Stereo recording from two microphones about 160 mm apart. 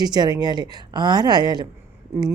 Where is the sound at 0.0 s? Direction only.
25° right (ahead or behind).